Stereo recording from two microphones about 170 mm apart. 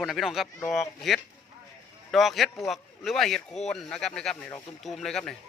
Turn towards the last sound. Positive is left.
turn(degrees=0)  # may be behind; listen again after turning